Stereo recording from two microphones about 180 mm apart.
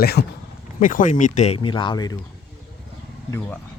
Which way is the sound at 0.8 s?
50° left (ahead or behind).